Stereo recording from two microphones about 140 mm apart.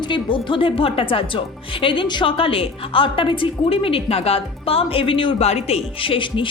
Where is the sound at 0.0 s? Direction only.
35° left (ahead or behind).